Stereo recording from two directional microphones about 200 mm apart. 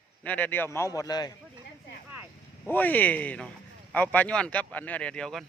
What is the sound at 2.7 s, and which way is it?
Speech, 10° left (ahead or behind).